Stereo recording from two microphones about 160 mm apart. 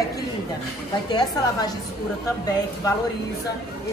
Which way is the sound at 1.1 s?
25° left (ahead or behind).